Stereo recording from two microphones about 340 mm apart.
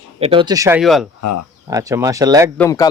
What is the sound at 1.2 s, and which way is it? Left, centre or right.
Speech, left.